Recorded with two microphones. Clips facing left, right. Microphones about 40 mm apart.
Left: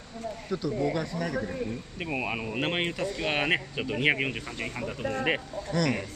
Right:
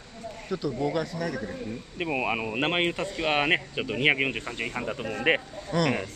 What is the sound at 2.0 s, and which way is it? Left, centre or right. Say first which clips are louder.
Speech: right 5 dB; centre.